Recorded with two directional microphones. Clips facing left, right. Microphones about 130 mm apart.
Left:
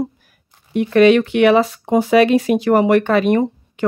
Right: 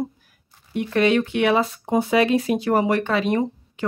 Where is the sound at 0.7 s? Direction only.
80° left.